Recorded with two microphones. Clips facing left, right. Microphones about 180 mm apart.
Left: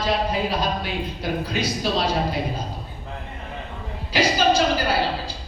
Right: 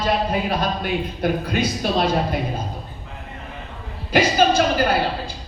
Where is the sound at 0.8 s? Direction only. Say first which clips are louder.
Right 5 dB; 55° right (ahead or behind).